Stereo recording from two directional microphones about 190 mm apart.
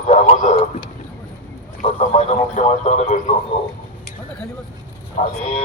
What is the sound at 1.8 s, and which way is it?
A man's voice, 35° left (ahead or behind).